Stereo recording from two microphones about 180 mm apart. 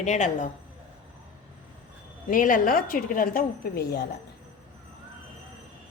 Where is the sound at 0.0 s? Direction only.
40° left (ahead or behind).